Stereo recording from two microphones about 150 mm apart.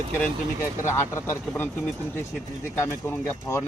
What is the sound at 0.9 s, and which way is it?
Speech, 15° left (ahead or behind).